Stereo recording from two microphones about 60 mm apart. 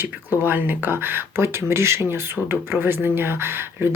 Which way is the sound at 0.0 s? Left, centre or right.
Right.